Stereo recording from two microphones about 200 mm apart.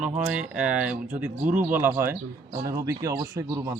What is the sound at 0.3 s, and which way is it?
Speech, 5° right (ahead or behind).